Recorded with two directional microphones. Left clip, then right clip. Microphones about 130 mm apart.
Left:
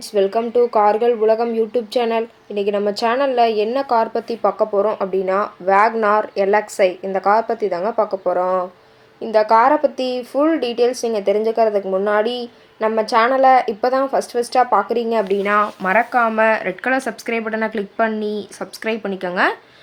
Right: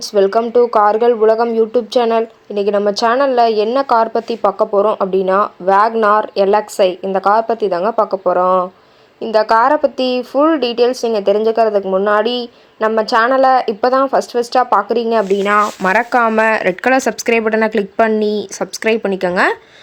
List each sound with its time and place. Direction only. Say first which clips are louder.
0.3 s speech: right 3 dB; 15° right (ahead or behind)
6.3 s speech: right 4 dB; 10° left (ahead or behind)
7.2 s speech: right 3 dB; 20° right (ahead or behind)
15.8 s speech: right 3 dB; 60° right (ahead or behind)